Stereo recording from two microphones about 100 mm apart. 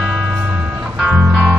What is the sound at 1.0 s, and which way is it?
Music, 10° right (ahead or behind).